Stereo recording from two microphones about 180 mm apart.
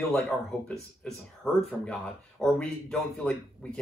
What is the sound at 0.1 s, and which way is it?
Speech, 5° left (ahead or behind).